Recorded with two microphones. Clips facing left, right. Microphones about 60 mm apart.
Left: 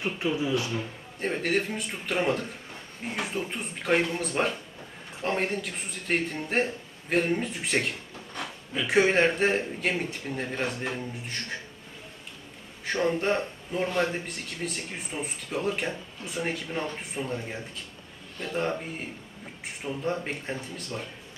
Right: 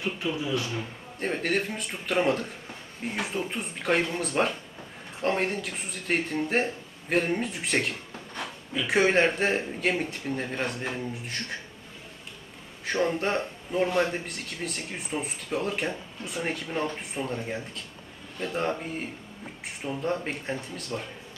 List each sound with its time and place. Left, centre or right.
0.0 s speech: left
1.2 s a man's voice: centre
12.8 s a man's voice: centre